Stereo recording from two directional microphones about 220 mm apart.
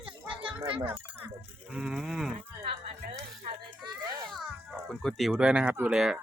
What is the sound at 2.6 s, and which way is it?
Music, 30° right (ahead or behind).